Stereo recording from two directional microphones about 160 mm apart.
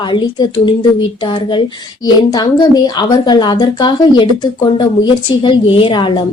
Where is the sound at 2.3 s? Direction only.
25° left (ahead or behind).